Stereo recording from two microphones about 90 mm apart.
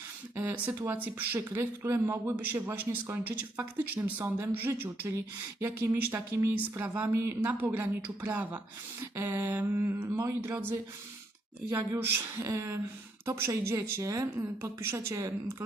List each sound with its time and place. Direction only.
0.3 s a woman's voice: 20° right (ahead or behind)
10.5 s a woman's voice: 20° right (ahead or behind)